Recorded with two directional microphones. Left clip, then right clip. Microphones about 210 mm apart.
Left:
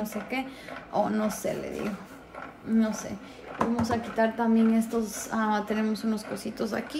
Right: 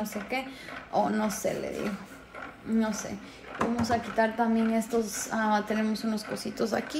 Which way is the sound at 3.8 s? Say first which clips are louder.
Right 2 dB; 15° left (ahead or behind).